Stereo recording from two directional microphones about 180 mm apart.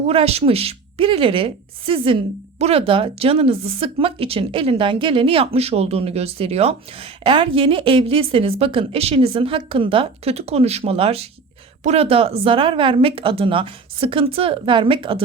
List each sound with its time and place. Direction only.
0.1 s a woman's voice: 35° right (ahead or behind)